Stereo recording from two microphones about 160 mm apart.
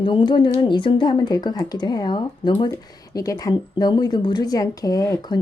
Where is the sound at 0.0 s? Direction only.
30° left (ahead or behind).